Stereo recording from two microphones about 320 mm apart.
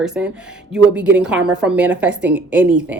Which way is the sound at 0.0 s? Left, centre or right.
Centre.